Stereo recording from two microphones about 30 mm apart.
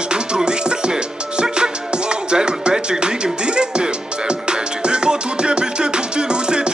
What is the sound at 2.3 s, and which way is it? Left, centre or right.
Music, right.